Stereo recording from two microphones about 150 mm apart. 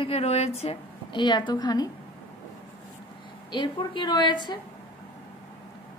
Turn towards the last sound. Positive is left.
turn(degrees=30)  # may be behind; listen again after turning